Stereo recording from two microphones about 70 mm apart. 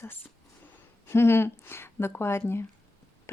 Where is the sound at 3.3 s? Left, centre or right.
Left.